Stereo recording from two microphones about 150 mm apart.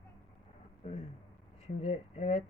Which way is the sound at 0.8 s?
45° left (ahead or behind).